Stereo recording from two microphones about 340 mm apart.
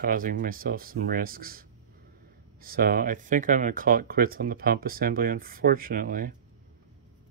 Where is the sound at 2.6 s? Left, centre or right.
Right.